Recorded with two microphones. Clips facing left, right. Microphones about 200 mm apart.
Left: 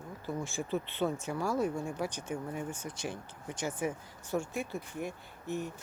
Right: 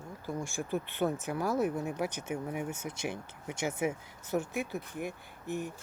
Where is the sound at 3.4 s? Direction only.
10° right (ahead or behind).